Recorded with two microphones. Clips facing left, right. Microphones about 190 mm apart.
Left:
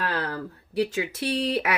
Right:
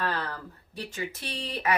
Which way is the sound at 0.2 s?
85° left.